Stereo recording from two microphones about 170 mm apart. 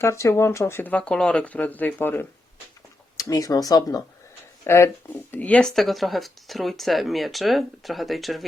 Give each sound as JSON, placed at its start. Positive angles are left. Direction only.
{"t": 0.0, "sound": "speech", "side_deg": 15}